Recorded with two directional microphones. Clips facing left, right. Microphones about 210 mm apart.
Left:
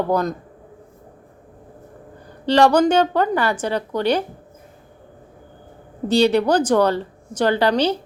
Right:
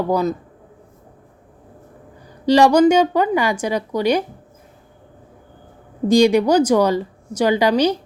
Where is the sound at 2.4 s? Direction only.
10° right (ahead or behind).